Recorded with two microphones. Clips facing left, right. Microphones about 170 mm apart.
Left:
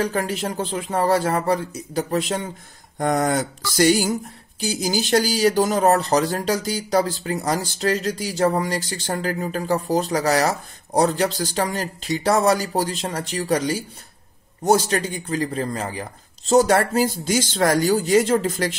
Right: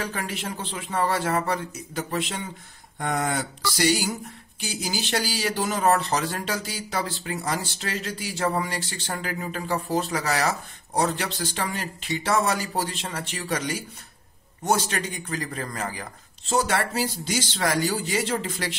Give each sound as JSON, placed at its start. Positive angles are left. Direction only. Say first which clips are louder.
{"t": 0.0, "sound": "speech", "louder": "left 8 dB", "side_deg": 40}
{"t": 16.5, "sound": "speech", "louder": "left 8 dB", "side_deg": 45}